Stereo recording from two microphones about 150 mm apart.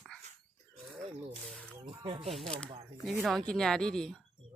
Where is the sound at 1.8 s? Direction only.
40° right (ahead or behind).